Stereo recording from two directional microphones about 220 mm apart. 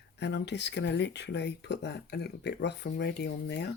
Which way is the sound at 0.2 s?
50° left (ahead or behind).